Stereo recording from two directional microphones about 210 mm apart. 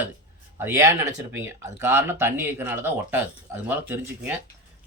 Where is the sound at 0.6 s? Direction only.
15° right (ahead or behind).